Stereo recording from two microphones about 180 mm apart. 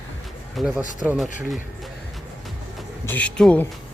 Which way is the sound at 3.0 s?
10° left (ahead or behind).